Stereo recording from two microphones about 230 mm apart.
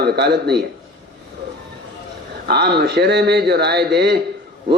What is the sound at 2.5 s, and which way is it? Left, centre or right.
Speech, right.